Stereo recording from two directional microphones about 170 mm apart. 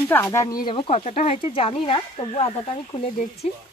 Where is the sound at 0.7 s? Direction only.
35° left (ahead or behind).